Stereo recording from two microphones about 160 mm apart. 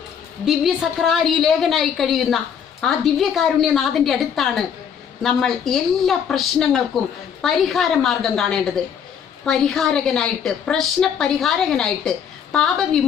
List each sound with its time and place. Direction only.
0.4 s a woman's voice: centre (ahead or behind)